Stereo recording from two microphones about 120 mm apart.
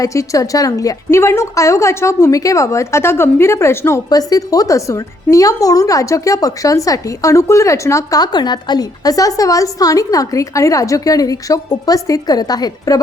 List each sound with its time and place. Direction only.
0.0 s a woman's voice: 25° left (ahead or behind)